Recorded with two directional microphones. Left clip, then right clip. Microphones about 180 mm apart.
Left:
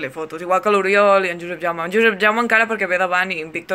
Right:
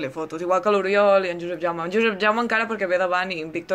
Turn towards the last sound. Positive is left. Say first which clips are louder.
# left 4 dB
turn(degrees=-5)  # may be behind; listen again after turning